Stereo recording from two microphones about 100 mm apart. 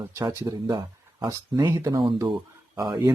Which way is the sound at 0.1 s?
35° right (ahead or behind).